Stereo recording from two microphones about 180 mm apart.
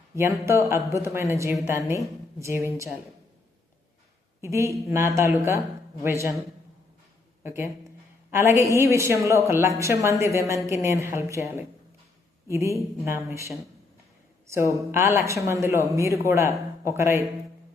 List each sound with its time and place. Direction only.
0.2 s speech: 15° right (ahead or behind)
4.4 s speech: 15° right (ahead or behind)
7.4 s a woman's voice: 15° right (ahead or behind)
12.5 s speech: 15° right (ahead or behind)
14.4 s speech: 15° right (ahead or behind)